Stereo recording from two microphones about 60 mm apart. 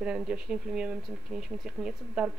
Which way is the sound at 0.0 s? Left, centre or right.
Centre.